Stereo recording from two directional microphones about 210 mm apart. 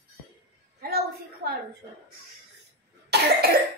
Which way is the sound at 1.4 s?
50° right (ahead or behind).